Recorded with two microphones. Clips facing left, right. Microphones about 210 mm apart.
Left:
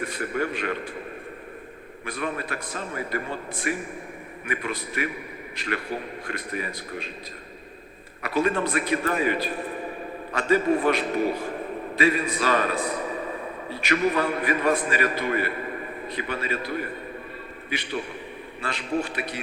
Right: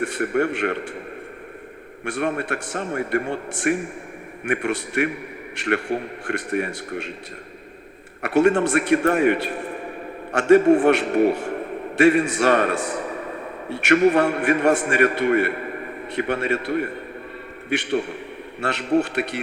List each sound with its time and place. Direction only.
0.0 s a man's voice: 70° right (ahead or behind)
2.0 s a man's voice: 70° right (ahead or behind)
8.2 s a man's voice: 70° right (ahead or behind)